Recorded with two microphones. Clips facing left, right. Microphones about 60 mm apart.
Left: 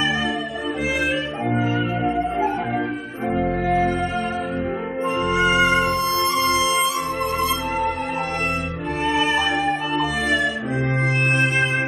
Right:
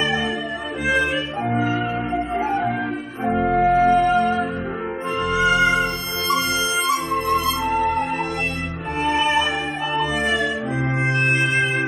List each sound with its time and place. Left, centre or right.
3.6 s music: centre
3.9 s music: right